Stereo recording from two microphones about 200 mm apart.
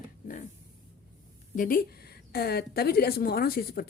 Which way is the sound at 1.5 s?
45° left (ahead or behind).